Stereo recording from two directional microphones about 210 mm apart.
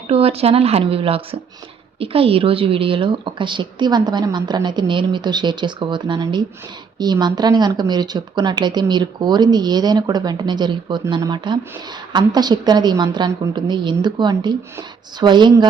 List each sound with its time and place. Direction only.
0.1 s speech: 30° right (ahead or behind)